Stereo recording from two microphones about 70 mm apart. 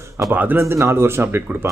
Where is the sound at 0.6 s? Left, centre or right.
Right.